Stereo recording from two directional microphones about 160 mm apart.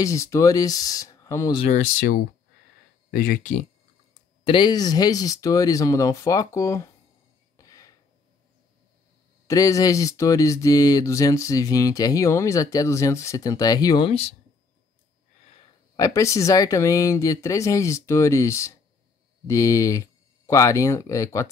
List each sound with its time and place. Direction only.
0.0 s speech: 20° left (ahead or behind)
1.6 s speech: 50° left (ahead or behind); by 3.5 s 65° left (ahead or behind)
4.5 s speech: 30° left (ahead or behind)
7.5 s a sound: 20° left (ahead or behind)
9.5 s speech: 20° left (ahead or behind)
16.0 s speech: 20° left (ahead or behind)